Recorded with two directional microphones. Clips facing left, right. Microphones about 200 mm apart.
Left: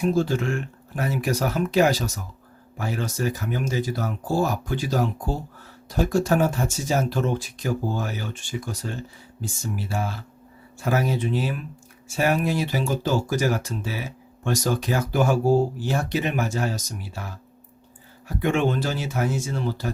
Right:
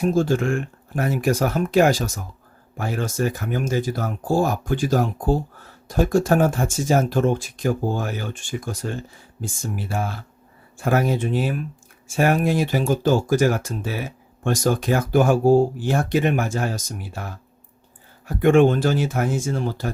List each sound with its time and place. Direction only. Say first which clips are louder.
0.0 s speech: right 3 dB; 50° right (ahead or behind)
18.3 s speech: right 7 dB; 50° right (ahead or behind)